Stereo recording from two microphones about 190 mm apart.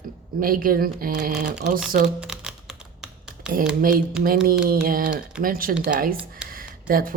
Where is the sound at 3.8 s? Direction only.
50° right (ahead or behind).